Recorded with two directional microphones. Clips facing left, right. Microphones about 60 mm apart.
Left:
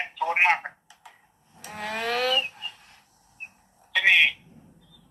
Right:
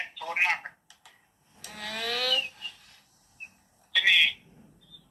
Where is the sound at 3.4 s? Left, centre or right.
Left.